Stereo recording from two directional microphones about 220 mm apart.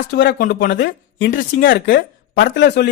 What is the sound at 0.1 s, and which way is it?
Speech, 50° left (ahead or behind).